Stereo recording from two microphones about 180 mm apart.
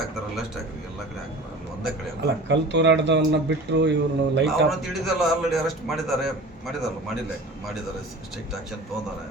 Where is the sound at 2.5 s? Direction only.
80° right.